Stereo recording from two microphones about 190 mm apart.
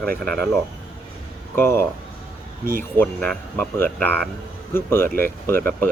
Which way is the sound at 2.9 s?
5° left (ahead or behind).